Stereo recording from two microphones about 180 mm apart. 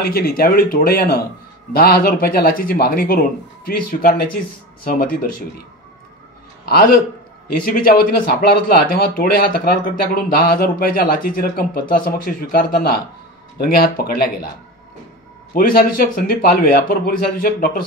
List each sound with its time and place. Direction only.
0.0 s a man's voice: 55° left (ahead or behind)
6.6 s a man's voice: 60° left (ahead or behind)
15.5 s a man's voice: 55° left (ahead or behind)